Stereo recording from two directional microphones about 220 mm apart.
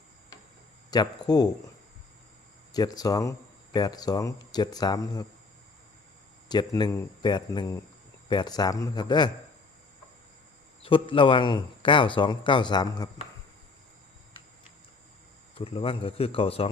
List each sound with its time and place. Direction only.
0.9 s speech: 20° left (ahead or behind)
2.7 s speech: 15° left (ahead or behind)
6.5 s speech: 20° left (ahead or behind)
10.8 s speech: 25° left (ahead or behind)
15.5 s speech: 25° left (ahead or behind)